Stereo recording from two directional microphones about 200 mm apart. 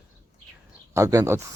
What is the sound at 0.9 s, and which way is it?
Speech, 15° right (ahead or behind).